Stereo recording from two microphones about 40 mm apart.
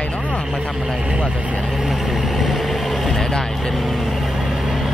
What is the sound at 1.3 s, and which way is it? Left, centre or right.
Speech, right.